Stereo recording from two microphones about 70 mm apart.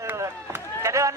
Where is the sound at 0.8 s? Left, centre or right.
Right.